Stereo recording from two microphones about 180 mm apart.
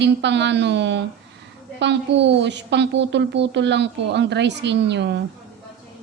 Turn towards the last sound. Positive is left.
turn(degrees=-75)  # may be behind; listen again after turning